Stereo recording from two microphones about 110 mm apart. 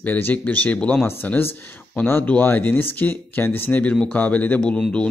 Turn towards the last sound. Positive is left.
turn(degrees=10)  # may be behind; listen again after turning